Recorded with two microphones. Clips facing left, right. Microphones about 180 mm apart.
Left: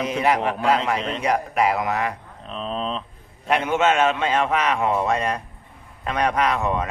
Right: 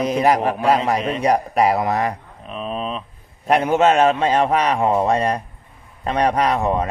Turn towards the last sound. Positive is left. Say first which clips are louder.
# right 3 dB
turn(degrees=-35)  # may be behind; listen again after turning